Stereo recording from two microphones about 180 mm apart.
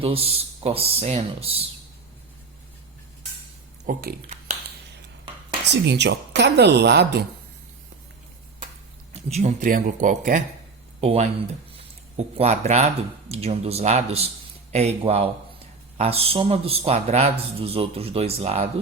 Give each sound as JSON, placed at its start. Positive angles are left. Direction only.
{"t": 0.0, "sound": "a man's voice", "side_deg": -30}
{"t": 3.8, "sound": "speech", "side_deg": -55}
{"t": 5.7, "sound": "a woman's voice", "side_deg": -75}
{"t": 9.3, "sound": "speech", "side_deg": -40}
{"t": 11.0, "sound": "a man's voice", "side_deg": -35}